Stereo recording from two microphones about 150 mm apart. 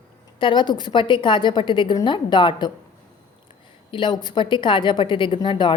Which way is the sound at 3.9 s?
30° left (ahead or behind).